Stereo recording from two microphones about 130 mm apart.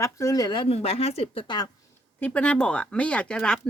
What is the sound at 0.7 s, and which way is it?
Speech, 50° left (ahead or behind).